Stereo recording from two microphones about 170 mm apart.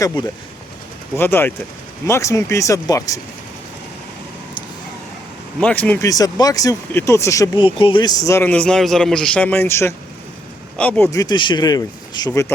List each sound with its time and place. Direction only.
1.1 s a man's voice: 15° left (ahead or behind)
5.5 s a man's voice: 5° left (ahead or behind)
6.1 s speech: 20° left (ahead or behind)
7.6 s a man's voice: 30° left (ahead or behind)